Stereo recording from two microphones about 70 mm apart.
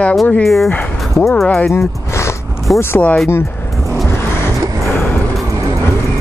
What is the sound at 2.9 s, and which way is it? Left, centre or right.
Speech, left.